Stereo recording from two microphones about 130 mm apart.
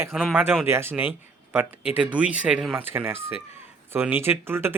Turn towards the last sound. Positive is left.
turn(degrees=-20)  # may be behind; listen again after turning